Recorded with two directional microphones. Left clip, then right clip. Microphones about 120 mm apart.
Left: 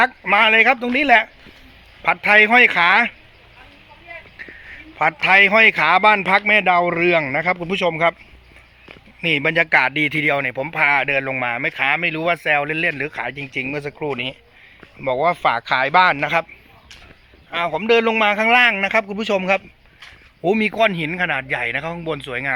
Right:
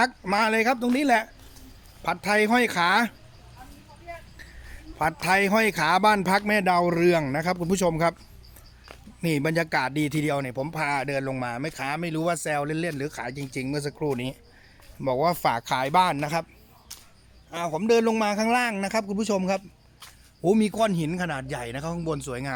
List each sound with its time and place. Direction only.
0.2 s a man's voice: 30° right (ahead or behind)
4.9 s a man's voice: 30° right (ahead or behind)
7.7 s speech: 50° right (ahead or behind)
9.2 s speech: 40° right (ahead or behind); by 13.3 s 15° right (ahead or behind)
13.3 s a man's voice: 25° right (ahead or behind)
15.0 s speech: 45° right (ahead or behind)
15.6 s a man's voice: 30° right (ahead or behind)
17.5 s speech: 10° right (ahead or behind)